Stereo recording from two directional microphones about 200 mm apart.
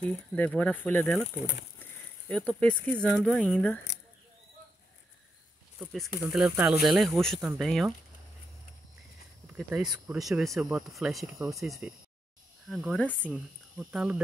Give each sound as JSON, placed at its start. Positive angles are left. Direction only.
{"t": 0.0, "sound": "speech", "side_deg": 5}
{"t": 2.2, "sound": "speech", "side_deg": 5}
{"t": 5.8, "sound": "speech", "side_deg": 0}
{"t": 9.5, "sound": "speech", "side_deg": -10}
{"t": 13.3, "sound": "cricket", "side_deg": -5}